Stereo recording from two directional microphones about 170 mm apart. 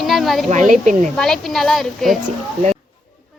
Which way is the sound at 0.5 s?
45° right (ahead or behind).